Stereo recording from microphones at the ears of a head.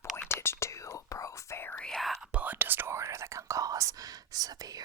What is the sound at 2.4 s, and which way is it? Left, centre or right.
Whispering, right.